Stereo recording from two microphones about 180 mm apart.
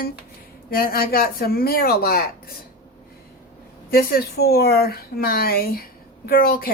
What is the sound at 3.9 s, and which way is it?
A woman's voice, 55° left (ahead or behind).